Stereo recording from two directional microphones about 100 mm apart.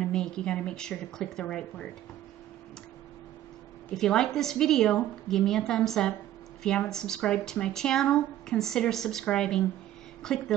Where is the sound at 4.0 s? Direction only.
5° left (ahead or behind).